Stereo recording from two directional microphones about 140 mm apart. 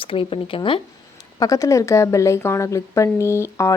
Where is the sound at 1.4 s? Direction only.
25° left (ahead or behind).